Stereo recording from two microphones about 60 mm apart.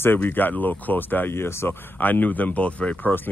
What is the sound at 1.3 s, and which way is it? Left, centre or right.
Speech, left.